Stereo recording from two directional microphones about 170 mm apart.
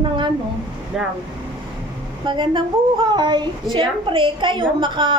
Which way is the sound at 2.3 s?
30° right (ahead or behind).